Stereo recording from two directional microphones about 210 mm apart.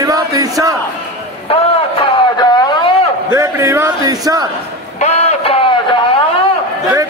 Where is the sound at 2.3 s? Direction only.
20° left (ahead or behind).